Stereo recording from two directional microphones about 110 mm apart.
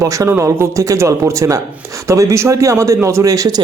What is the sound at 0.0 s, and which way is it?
A man's voice, 30° right (ahead or behind).